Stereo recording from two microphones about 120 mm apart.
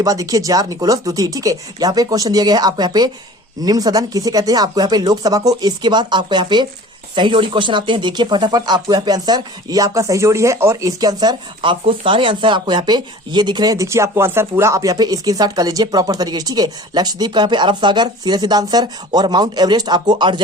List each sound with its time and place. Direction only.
0.0 s speech: 30° right (ahead or behind)